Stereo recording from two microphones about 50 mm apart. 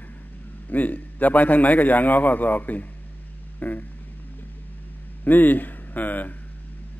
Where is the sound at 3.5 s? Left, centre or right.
Left.